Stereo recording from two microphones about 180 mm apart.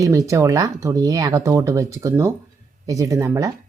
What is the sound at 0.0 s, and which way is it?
Speech, 20° right (ahead or behind).